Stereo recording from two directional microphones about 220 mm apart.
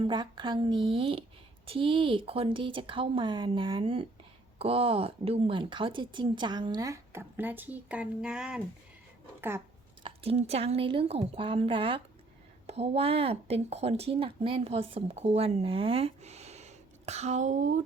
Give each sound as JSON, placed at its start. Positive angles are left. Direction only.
{"t": 0.0, "sound": "speech", "side_deg": -20}
{"t": 10.0, "sound": "speech", "side_deg": -30}